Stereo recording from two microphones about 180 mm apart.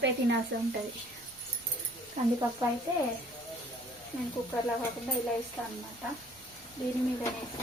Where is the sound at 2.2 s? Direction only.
40° right (ahead or behind).